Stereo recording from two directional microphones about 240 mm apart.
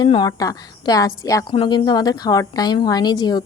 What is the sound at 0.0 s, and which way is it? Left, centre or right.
A woman's voice, centre.